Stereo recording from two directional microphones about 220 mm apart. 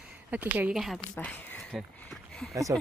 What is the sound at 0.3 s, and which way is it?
Speech, 10° right (ahead or behind).